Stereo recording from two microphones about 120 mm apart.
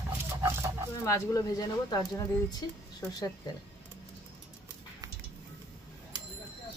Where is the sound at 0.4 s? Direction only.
20° right (ahead or behind).